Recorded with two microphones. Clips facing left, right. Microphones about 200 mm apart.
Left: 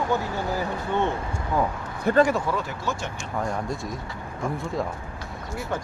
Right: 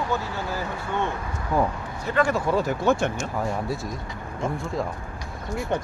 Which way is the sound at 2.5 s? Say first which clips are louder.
Right 6 dB; 40° right (ahead or behind).